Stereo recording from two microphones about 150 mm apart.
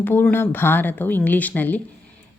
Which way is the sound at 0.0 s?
15° left (ahead or behind).